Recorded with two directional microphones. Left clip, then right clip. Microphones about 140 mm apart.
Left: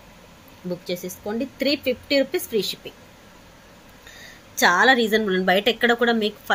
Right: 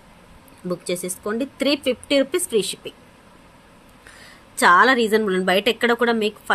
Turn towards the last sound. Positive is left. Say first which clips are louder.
# right 1 dB
turn(degrees=-20)  # may be behind; listen again after turning